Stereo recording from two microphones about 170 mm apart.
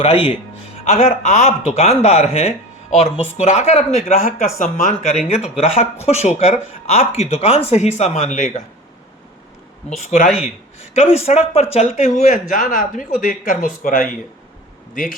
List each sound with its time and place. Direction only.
0.0 s speech: 35° left (ahead or behind)
10.0 s speech: 45° left (ahead or behind)
10.2 s speech: 5° right (ahead or behind)
10.8 s speech: 40° left (ahead or behind); by 14.1 s 55° left (ahead or behind)